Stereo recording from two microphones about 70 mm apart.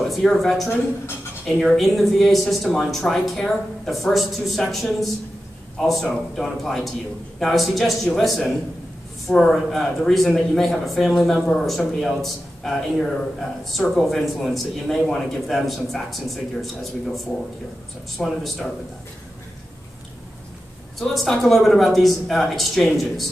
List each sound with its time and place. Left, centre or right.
0.0 s speech: centre
21.0 s speech: centre